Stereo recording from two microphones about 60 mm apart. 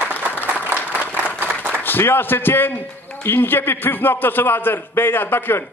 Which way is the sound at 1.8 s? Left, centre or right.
Left.